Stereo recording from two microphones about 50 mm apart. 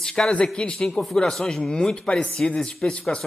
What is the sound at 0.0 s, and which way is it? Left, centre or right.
A man's voice, centre.